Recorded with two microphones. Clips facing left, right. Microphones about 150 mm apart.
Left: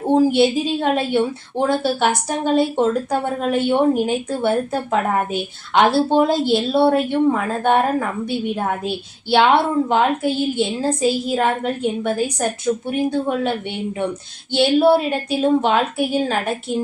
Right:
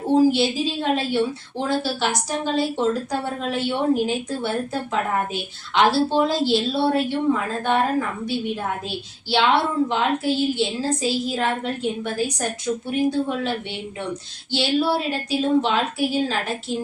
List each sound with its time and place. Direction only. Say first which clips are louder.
0.1 s a woman's voice: left 3 dB; 55° left (ahead or behind)
14.5 s a woman's voice: left 7 dB; 55° left (ahead or behind)